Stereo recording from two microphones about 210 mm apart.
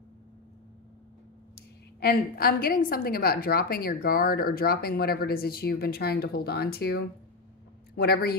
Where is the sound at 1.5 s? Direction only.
45° left (ahead or behind).